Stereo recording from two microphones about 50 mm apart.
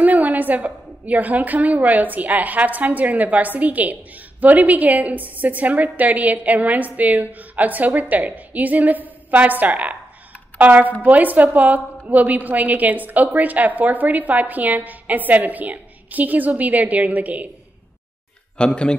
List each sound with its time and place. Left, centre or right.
0.0 s a woman's voice: right
18.6 s speech: centre